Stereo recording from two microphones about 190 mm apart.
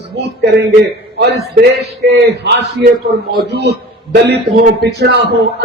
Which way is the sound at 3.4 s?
60° right (ahead or behind).